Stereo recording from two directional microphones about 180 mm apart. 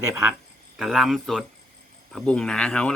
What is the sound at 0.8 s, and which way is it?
Speech, centre (ahead or behind).